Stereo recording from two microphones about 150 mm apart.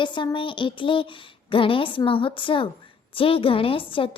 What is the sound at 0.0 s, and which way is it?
Speech, 30° left (ahead or behind).